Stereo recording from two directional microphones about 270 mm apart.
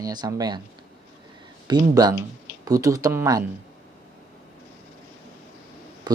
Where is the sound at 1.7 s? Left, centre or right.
Centre.